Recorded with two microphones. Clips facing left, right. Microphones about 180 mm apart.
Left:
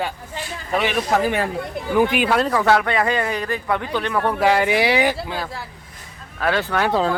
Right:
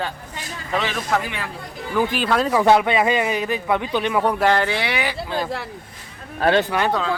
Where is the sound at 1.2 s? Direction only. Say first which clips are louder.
Left 9 dB; 45° left (ahead or behind).